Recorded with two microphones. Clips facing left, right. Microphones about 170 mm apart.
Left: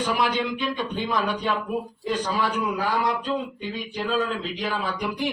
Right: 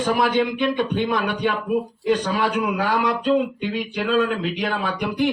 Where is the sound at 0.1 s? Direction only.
55° right (ahead or behind).